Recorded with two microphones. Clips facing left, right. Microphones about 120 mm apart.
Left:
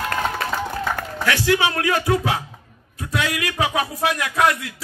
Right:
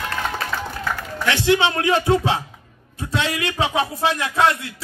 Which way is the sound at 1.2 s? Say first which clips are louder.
Right 2 dB; 25° right (ahead or behind).